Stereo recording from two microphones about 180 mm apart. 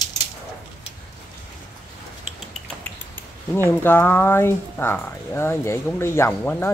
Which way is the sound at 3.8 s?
10° left (ahead or behind).